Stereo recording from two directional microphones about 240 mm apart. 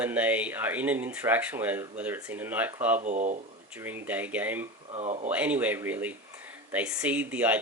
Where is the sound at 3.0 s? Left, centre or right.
Right.